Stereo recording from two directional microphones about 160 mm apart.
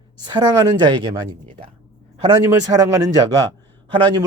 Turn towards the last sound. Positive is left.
turn(degrees=-30)  # may be behind; listen again after turning